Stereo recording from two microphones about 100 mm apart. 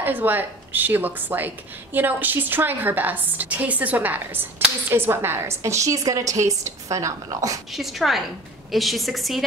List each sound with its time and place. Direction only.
0.0 s speech: 20° right (ahead or behind); by 7.6 s 35° right (ahead or behind)
7.7 s a woman's voice: centre (ahead or behind)